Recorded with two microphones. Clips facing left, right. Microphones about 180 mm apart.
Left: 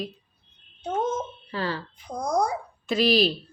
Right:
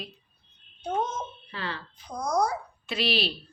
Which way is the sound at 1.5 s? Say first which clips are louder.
Left 8 dB; 40° left (ahead or behind).